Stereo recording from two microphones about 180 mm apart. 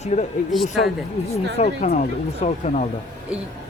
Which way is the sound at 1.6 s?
45° left (ahead or behind).